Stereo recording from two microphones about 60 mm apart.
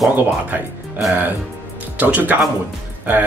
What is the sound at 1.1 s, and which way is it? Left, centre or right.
Speech, right.